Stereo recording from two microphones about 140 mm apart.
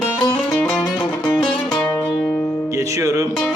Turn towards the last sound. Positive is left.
turn(degrees=-25)  # may be behind; listen again after turning